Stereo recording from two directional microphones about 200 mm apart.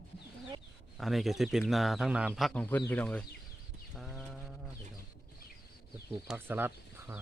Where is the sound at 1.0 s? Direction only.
Centre (ahead or behind).